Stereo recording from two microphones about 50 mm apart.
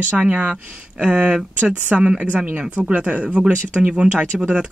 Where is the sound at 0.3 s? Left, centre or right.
Right.